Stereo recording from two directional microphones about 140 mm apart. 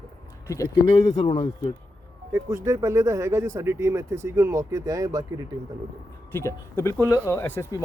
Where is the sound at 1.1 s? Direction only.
45° left (ahead or behind).